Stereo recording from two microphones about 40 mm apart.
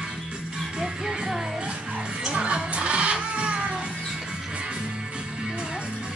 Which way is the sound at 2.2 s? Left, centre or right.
Right.